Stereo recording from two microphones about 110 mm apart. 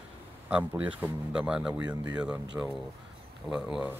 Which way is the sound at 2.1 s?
10° right (ahead or behind).